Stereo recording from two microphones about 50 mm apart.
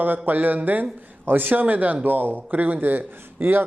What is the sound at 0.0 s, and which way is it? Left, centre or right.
Speech, right.